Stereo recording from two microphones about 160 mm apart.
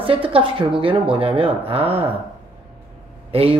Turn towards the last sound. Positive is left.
turn(degrees=-35)  # may be behind; listen again after turning